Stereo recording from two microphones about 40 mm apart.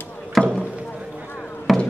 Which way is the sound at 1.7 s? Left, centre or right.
Centre.